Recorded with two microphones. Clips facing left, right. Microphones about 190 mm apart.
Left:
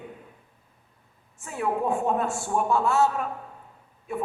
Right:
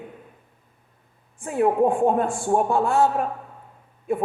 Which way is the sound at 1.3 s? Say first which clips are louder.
Right 8 dB; 50° right (ahead or behind).